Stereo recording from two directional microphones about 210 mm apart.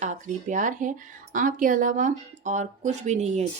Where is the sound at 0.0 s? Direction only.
35° right (ahead or behind).